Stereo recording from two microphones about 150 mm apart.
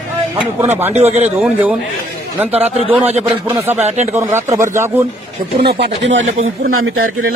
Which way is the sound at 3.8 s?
50° right (ahead or behind).